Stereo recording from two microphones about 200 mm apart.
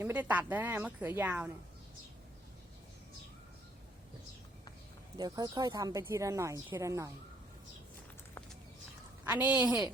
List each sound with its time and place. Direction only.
0.0 s speech: 10° right (ahead or behind)
5.1 s speech: 20° right (ahead or behind)
9.2 s a woman's voice: 10° right (ahead or behind)